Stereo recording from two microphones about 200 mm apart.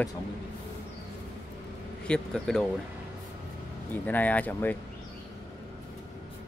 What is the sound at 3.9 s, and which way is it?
Speech, 10° left (ahead or behind).